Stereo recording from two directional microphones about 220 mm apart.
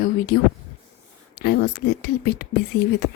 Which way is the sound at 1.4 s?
50° left (ahead or behind).